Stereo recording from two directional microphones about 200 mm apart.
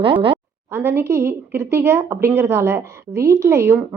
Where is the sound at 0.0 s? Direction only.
25° right (ahead or behind).